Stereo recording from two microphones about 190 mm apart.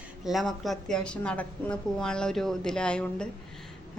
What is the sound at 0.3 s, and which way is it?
A woman's voice, centre (ahead or behind).